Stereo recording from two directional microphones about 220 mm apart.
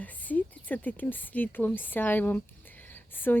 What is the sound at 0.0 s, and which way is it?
Speech, 5° left (ahead or behind).